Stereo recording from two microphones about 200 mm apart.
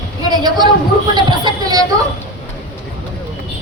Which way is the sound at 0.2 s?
20° right (ahead or behind).